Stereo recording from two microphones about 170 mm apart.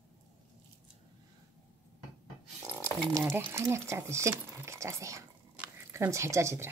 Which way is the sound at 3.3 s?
15° right (ahead or behind).